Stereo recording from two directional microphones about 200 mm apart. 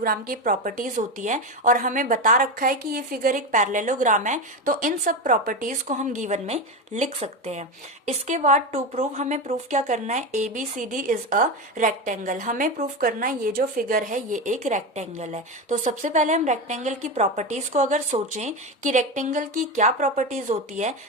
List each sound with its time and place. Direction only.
0.0 s a woman's voice: 45° right (ahead or behind)